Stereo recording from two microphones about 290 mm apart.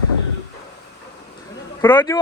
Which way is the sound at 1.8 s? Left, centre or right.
Centre.